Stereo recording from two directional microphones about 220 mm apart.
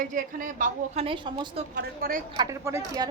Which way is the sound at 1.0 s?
20° right (ahead or behind).